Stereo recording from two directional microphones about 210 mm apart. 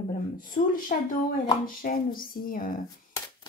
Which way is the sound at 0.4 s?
40° left (ahead or behind).